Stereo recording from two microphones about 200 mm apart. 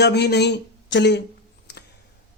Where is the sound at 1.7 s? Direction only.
60° left (ahead or behind).